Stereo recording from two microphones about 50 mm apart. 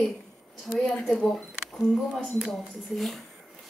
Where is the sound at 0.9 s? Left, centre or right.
Centre.